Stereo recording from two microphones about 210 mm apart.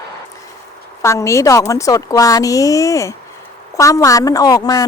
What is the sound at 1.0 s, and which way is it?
A woman's voice, 15° left (ahead or behind).